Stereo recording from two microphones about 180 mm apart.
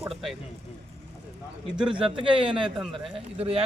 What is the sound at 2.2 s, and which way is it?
A man's voice, 30° right (ahead or behind).